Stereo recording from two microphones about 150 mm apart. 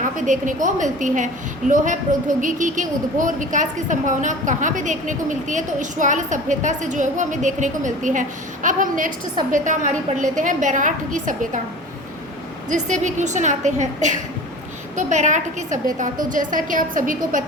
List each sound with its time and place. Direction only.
0.0 s a woman's voice: 60° right (ahead or behind)
12.6 s a woman's voice: 55° right (ahead or behind)